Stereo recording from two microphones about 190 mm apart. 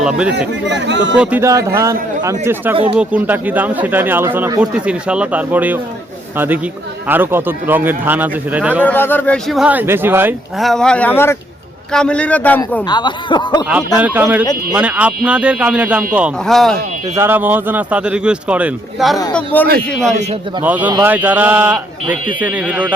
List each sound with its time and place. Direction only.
0.0 s speech: 5° right (ahead or behind)
0.7 s speech: 70° right (ahead or behind)
1.2 s a man's voice: 10° right (ahead or behind)
8.8 s speech: 10° left (ahead or behind); by 10.3 s 10° right (ahead or behind)
10.6 s a man's voice: centre (ahead or behind)
12.9 s speech: 25° left (ahead or behind)
14.0 s a man's voice: 10° right (ahead or behind)
17.2 s a man's voice: 10° right (ahead or behind)
20.6 s a man's voice: 10° right (ahead or behind)